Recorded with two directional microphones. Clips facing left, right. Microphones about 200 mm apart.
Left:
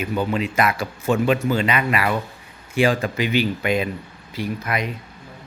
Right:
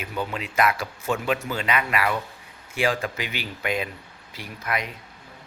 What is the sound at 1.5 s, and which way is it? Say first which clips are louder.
Speech: left 4 dB; 5° right (ahead or behind).